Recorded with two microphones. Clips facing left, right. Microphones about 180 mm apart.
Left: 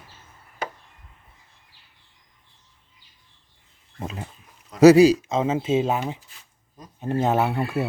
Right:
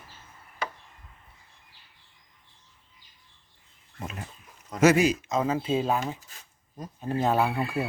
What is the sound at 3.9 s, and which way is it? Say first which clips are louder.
Speech: left 4 dB; 30° left (ahead or behind).